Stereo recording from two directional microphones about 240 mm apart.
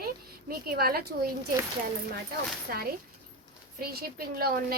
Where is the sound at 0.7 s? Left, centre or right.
Right.